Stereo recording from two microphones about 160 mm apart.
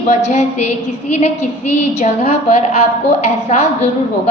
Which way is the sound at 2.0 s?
45° left (ahead or behind).